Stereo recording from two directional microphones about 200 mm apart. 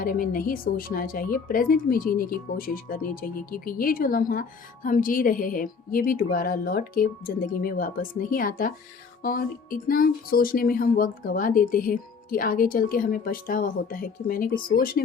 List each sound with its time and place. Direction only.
0.0 s a woman's voice: 45° left (ahead or behind)